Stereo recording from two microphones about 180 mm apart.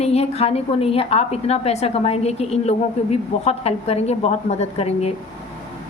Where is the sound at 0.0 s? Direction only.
35° left (ahead or behind).